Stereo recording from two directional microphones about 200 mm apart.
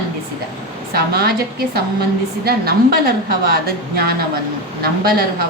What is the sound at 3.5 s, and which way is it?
A woman's voice, 50° right (ahead or behind).